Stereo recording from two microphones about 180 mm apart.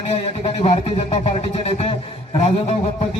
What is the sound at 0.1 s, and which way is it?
A man's voice, 35° left (ahead or behind).